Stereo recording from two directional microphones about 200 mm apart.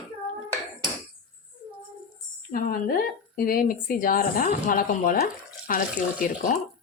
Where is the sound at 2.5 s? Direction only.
45° left (ahead or behind).